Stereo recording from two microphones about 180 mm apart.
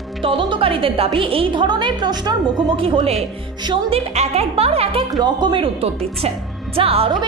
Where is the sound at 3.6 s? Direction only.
30° right (ahead or behind).